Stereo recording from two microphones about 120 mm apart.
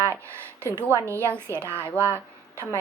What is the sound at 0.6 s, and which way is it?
A woman's voice, 25° right (ahead or behind).